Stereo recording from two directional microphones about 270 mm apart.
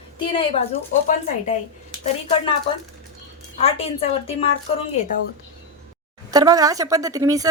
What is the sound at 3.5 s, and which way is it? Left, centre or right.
Speech, left.